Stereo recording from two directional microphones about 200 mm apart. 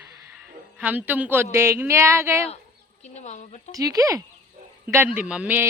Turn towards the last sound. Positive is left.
turn(degrees=-5)  # may be behind; listen again after turning